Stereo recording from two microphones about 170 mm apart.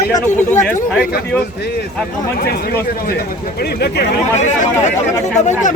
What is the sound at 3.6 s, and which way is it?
Speech, 75° left (ahead or behind).